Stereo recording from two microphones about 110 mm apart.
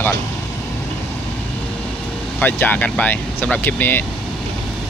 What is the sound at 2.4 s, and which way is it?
Speech, 15° left (ahead or behind).